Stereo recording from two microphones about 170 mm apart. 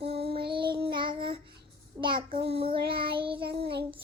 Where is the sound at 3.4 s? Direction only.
65° right (ahead or behind).